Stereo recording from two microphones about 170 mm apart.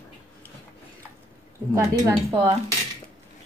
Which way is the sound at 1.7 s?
15° right (ahead or behind).